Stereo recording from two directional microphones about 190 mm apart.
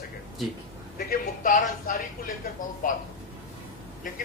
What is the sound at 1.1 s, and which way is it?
A man's voice, 45° left (ahead or behind).